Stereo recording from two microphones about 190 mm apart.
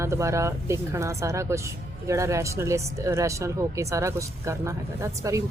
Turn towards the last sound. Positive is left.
turn(degrees=-15)  # may be behind; listen again after turning